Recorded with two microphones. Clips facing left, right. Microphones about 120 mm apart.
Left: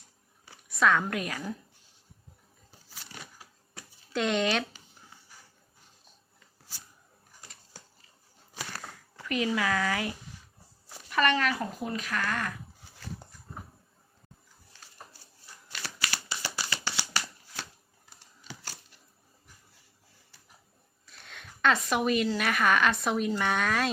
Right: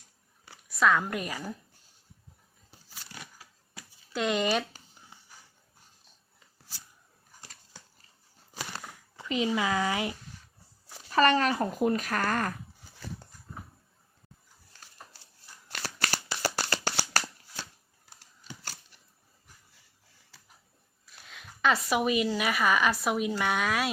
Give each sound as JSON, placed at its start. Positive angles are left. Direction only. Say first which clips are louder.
{"t": 0.7, "sound": "a woman's voice", "louder": "even", "side_deg": 0}
{"t": 4.1, "sound": "a woman's voice", "louder": "even", "side_deg": -5}
{"t": 8.7, "sound": "a sound", "louder": "even", "side_deg": -20}
{"t": 9.6, "sound": "speech", "louder": "right 1 dB", "side_deg": -20}
{"t": 11.1, "sound": "speech", "louder": "right 3 dB", "side_deg": -35}
{"t": 11.8, "sound": "speech", "louder": "right 6 dB", "side_deg": -50}
{"t": 15.8, "sound": "shuffling cards", "louder": "right 3 dB", "side_deg": -45}
{"t": 20.3, "sound": "a sound", "louder": "right 6 dB", "side_deg": -90}
{"t": 21.1, "sound": "a woman's voice", "louder": "left 1 dB", "side_deg": 0}